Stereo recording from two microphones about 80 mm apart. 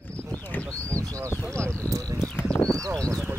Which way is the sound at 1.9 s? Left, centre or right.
Right.